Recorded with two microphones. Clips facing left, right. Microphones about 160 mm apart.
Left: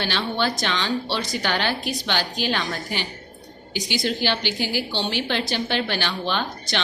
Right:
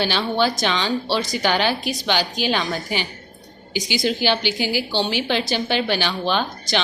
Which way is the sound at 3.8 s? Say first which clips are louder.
Right 3 dB; 90° right.